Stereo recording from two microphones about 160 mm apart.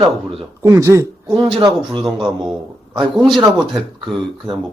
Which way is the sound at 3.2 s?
Centre (ahead or behind).